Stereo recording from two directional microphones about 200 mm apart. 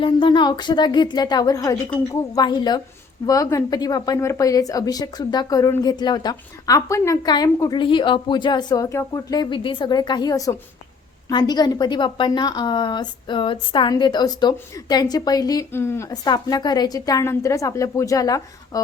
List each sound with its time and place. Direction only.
0.0 s a woman's voice: 25° left (ahead or behind)